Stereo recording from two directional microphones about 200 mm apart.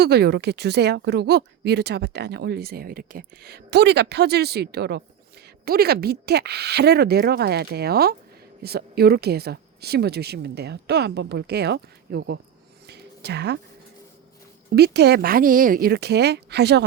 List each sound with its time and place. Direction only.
0.0 s a woman's voice: 55° right (ahead or behind)
12.9 s a sound: 55° right (ahead or behind)
14.8 s speech: 55° right (ahead or behind)